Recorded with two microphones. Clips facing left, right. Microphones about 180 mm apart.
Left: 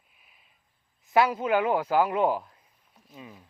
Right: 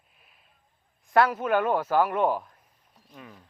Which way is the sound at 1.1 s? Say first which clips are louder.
Right 1 dB; 10° left (ahead or behind).